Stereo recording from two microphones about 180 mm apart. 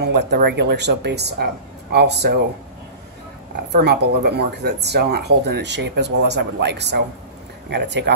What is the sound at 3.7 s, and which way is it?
Speech, 65° right (ahead or behind).